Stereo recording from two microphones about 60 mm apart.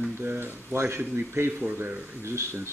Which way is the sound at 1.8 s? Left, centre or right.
Right.